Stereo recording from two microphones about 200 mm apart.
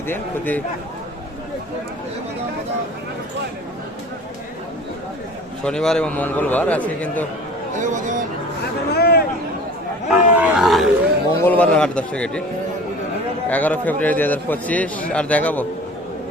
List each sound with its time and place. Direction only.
0.1 s a man's voice: 10° left (ahead or behind)
5.6 s a man's voice: 5° left (ahead or behind)
7.8 s speech: 40° right (ahead or behind)
8.9 s speech: 55° left (ahead or behind)
10.1 s a man's voice: 5° right (ahead or behind)
13.5 s a man's voice: 10° left (ahead or behind)